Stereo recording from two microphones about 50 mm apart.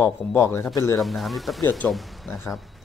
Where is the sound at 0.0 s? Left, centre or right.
Left.